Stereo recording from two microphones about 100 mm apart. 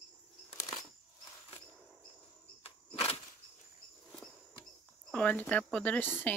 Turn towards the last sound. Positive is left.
turn(degrees=20)  # may be behind; listen again after turning